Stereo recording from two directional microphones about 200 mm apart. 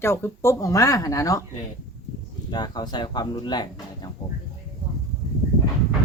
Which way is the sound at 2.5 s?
20° left (ahead or behind).